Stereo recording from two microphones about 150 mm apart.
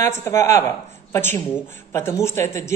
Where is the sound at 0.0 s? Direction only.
15° left (ahead or behind).